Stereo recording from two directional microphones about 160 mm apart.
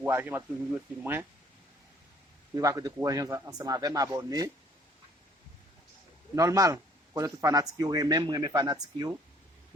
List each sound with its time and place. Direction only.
0.0 s speech: 15° right (ahead or behind)
2.6 s speech: 20° right (ahead or behind)
6.3 s speech: 20° right (ahead or behind)